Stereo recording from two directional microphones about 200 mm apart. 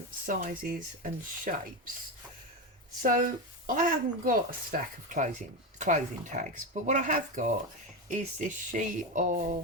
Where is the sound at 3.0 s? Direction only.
40° right (ahead or behind).